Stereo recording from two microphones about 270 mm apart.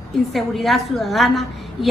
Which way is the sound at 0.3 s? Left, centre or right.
Centre.